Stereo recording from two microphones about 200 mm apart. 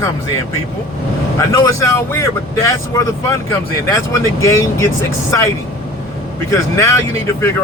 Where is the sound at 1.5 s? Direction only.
15° left (ahead or behind).